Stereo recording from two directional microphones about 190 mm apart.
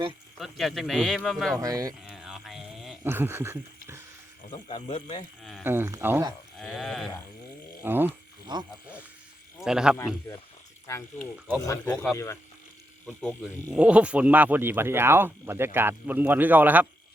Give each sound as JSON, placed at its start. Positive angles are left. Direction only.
{"t": 0.3, "sound": "a man's voice", "side_deg": 0}
{"t": 1.5, "sound": "speech", "side_deg": -20}
{"t": 2.0, "sound": "a sound", "side_deg": 0}
{"t": 3.0, "sound": "speech", "side_deg": -10}
{"t": 4.5, "sound": "speech", "side_deg": 30}
{"t": 5.4, "sound": "a man's voice", "side_deg": 0}
{"t": 5.6, "sound": "speech", "side_deg": -15}
{"t": 6.6, "sound": "a man's voice", "side_deg": 0}
{"t": 7.9, "sound": "speech", "side_deg": -10}
{"t": 8.5, "sound": "speech", "side_deg": -25}
{"t": 9.6, "sound": "a man's voice", "side_deg": -5}
{"t": 10.8, "sound": "speech", "side_deg": 15}
{"t": 13.7, "sound": "speech", "side_deg": -5}